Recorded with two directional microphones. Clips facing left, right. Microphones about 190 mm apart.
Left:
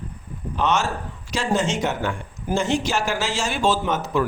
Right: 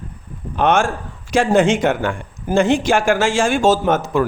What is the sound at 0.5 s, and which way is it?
A man's voice, 55° right (ahead or behind).